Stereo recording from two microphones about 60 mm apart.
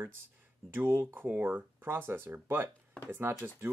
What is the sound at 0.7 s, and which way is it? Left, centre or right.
Speech, right.